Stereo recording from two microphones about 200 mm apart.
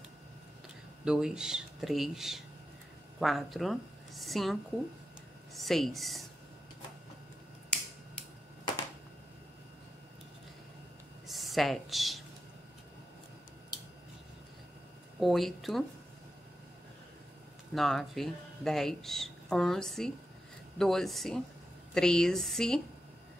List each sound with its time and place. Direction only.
1.0 s a woman's voice: 5° right (ahead or behind)
11.2 s a sound: centre (ahead or behind)
15.1 s speech: centre (ahead or behind)
17.7 s speech: centre (ahead or behind)